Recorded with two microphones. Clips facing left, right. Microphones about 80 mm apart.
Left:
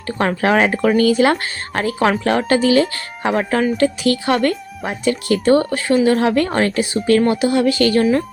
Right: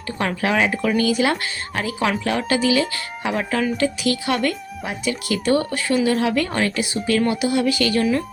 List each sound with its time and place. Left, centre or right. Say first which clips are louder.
0.2 s speech: left 5 dB; left